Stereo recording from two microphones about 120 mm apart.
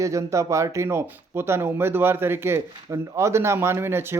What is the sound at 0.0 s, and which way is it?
Speech, 25° right (ahead or behind).